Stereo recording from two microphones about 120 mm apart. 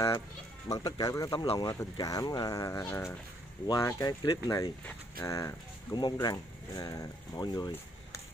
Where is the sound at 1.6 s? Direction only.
30° left (ahead or behind).